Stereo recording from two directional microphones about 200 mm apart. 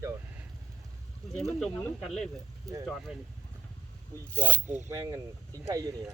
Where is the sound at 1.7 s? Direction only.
5° left (ahead or behind).